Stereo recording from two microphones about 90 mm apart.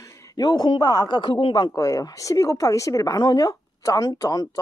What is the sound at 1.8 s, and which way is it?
A woman's voice, 35° left (ahead or behind).